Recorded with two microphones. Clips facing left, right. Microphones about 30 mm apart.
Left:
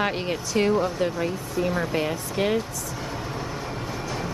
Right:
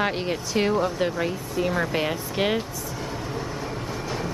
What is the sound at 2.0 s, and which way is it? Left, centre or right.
Speech, centre.